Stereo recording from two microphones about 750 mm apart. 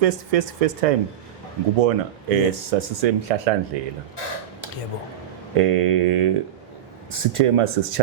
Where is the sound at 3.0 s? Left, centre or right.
Right.